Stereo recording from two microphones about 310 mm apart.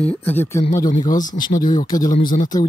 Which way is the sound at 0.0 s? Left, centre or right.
Centre.